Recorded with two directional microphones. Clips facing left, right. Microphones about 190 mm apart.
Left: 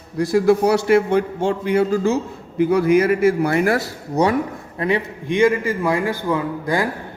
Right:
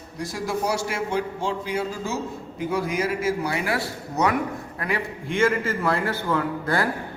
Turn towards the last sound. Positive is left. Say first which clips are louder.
# left 3 dB
turn(degrees=15)  # may be behind; listen again after turning